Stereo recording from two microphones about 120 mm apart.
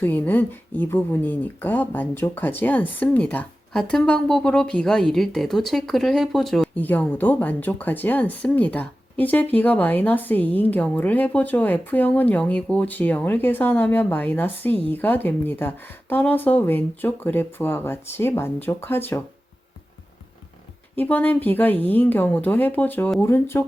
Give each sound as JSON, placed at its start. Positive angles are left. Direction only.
{"t": 0.0, "sound": "speech", "side_deg": 15}
{"t": 6.7, "sound": "speech", "side_deg": 15}
{"t": 20.9, "sound": "speech", "side_deg": 15}